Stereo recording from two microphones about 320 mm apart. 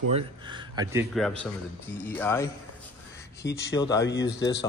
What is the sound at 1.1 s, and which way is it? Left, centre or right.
A man's voice, centre.